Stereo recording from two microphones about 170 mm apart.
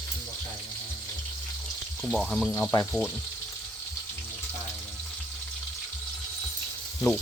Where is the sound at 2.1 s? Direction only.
Centre (ahead or behind).